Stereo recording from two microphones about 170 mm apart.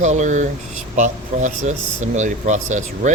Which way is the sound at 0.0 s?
45° right (ahead or behind).